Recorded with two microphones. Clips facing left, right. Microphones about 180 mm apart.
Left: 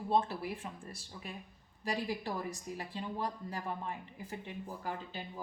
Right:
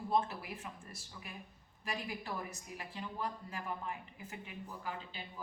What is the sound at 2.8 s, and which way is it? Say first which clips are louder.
A woman's voice: left 2 dB; 35° left (ahead or behind).